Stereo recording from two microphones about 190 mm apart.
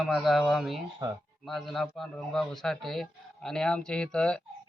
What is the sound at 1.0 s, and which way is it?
Speech, 20° right (ahead or behind).